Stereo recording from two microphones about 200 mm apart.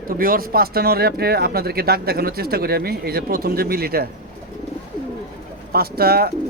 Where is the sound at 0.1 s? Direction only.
45° right (ahead or behind).